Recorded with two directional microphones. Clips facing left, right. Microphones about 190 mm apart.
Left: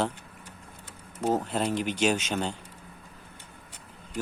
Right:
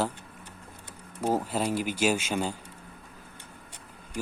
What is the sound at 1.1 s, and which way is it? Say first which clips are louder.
Speech: left 1 dB; 10° right (ahead or behind).